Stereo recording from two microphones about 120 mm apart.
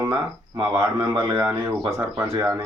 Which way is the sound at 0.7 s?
20° right (ahead or behind).